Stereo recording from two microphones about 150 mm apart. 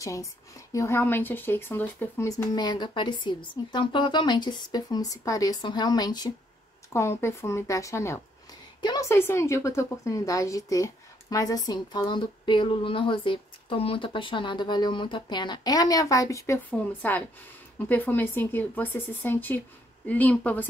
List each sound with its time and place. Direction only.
0.0 s a woman's voice: 20° left (ahead or behind)